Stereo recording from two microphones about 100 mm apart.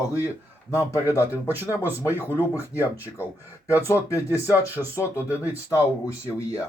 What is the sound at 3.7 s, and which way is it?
Speech, 30° left (ahead or behind).